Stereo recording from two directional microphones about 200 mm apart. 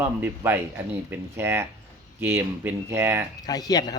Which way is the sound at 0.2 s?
10° right (ahead or behind).